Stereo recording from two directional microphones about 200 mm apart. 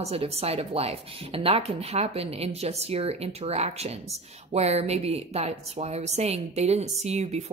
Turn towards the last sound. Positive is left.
turn(degrees=-35)  # may be behind; listen again after turning